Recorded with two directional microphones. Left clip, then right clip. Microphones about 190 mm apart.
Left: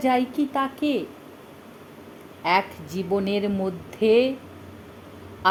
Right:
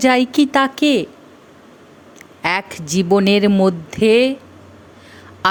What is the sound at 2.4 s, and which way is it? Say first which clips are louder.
Speech: right 2 dB; 40° right (ahead or behind).